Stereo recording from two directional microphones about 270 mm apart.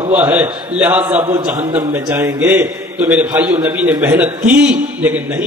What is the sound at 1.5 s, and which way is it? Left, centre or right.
Speech, right.